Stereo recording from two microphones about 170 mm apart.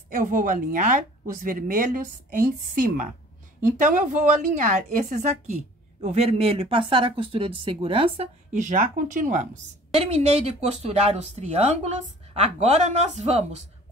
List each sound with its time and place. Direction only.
0.1 s speech: 50° right (ahead or behind); by 8.3 s 30° right (ahead or behind)
8.5 s speech: 50° right (ahead or behind)